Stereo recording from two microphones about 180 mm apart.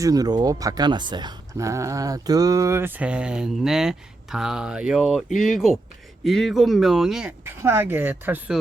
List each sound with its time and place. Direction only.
0.0 s speech: 20° right (ahead or behind)